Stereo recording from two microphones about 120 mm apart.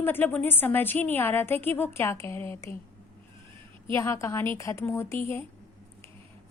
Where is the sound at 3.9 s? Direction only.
25° left (ahead or behind).